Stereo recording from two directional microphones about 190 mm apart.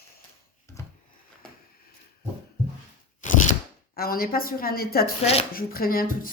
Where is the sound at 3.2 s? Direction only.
45° left (ahead or behind).